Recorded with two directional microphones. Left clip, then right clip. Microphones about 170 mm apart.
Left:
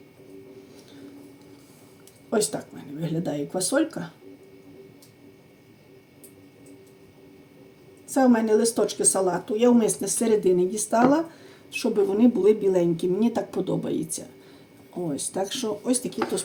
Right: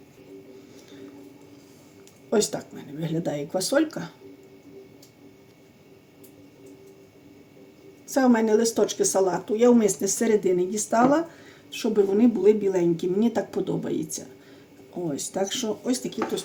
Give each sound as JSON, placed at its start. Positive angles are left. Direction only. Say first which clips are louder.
{"t": 2.3, "sound": "speech", "louder": "right 1 dB", "side_deg": -20}
{"t": 8.1, "sound": "speech", "louder": "even", "side_deg": -20}